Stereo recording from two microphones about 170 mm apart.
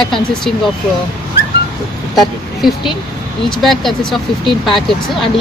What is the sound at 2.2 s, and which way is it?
Speech, centre (ahead or behind).